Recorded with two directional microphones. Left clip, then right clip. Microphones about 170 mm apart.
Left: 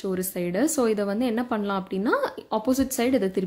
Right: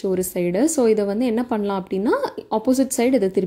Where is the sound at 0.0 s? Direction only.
20° right (ahead or behind).